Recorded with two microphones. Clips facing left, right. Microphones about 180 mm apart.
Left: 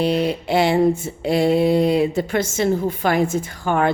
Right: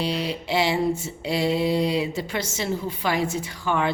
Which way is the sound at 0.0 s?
50° left (ahead or behind).